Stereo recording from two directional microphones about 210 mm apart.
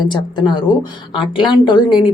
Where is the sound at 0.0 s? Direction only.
20° left (ahead or behind).